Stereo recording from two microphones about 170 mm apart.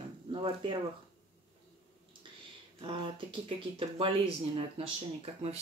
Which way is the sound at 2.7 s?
30° right (ahead or behind).